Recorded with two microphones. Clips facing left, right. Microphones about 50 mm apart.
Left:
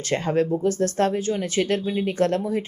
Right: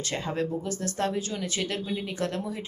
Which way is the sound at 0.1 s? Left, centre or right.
Left.